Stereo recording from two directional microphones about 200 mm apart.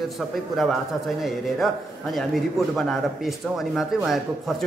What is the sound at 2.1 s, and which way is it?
Speech, centre (ahead or behind).